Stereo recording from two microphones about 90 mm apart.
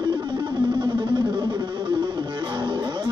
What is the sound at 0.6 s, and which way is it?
Music, 55° right (ahead or behind).